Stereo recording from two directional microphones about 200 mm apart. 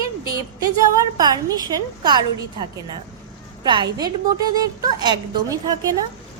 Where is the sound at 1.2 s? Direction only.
20° right (ahead or behind).